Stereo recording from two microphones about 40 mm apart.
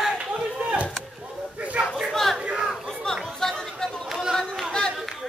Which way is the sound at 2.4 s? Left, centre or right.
Right.